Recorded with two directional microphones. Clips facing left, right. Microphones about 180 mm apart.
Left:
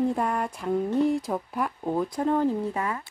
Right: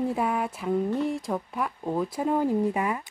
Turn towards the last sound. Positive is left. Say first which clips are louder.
# right 3 dB
turn(degrees=-15)  # may be behind; listen again after turning